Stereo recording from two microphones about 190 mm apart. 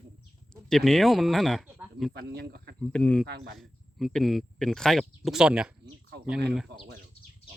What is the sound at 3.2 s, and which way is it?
Speech, 55° right (ahead or behind).